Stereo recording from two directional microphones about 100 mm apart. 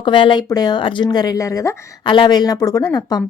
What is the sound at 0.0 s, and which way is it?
Speech, 55° left (ahead or behind).